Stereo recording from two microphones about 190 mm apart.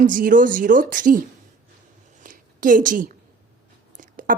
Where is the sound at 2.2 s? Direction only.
45° right (ahead or behind).